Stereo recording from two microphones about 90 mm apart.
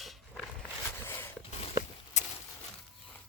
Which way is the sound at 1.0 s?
25° left (ahead or behind).